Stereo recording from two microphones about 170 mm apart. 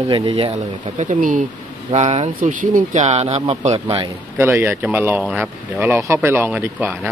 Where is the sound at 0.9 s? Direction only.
50° right (ahead or behind).